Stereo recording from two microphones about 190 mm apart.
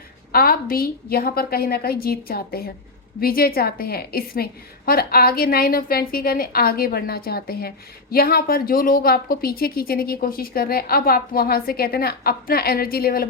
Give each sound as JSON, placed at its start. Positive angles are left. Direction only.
{"t": 0.3, "sound": "a woman's voice", "side_deg": 50}